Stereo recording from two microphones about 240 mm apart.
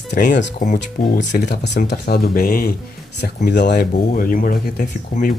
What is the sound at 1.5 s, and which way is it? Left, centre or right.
Speech, left.